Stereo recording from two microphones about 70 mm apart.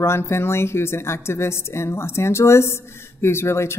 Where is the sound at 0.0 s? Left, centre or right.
Left.